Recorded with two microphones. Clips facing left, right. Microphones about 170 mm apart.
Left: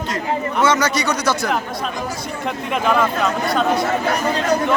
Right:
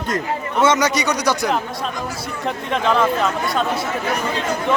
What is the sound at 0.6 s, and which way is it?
Speech, 20° right (ahead or behind).